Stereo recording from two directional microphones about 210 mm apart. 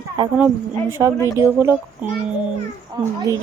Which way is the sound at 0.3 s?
10° right (ahead or behind).